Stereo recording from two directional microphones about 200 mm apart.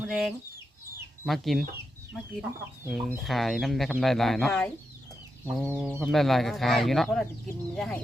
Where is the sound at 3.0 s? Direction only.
Centre (ahead or behind).